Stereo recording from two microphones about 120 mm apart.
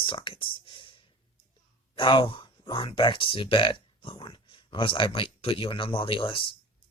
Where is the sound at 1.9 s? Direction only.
45° left (ahead or behind).